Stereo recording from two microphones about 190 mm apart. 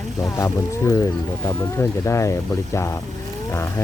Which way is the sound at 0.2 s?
15° left (ahead or behind).